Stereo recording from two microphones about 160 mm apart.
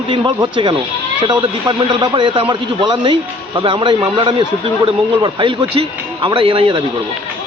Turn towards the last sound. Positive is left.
turn(degrees=-35)  # may be behind; listen again after turning